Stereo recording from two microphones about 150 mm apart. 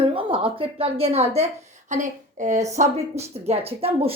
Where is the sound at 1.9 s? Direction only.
55° right (ahead or behind).